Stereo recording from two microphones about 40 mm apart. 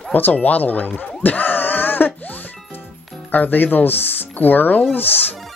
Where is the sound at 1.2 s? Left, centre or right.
Left.